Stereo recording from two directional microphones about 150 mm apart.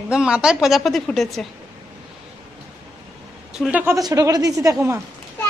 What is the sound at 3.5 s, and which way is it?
Speech, 5° right (ahead or behind).